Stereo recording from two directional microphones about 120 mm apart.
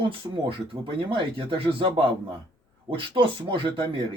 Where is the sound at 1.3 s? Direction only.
45° right (ahead or behind).